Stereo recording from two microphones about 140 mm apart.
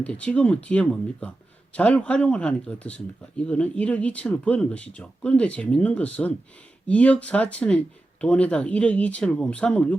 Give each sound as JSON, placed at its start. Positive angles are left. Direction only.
{"t": 0.0, "sound": "speech", "side_deg": 10}